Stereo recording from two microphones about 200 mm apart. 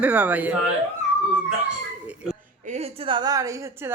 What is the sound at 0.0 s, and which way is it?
Speech, 5° right (ahead or behind).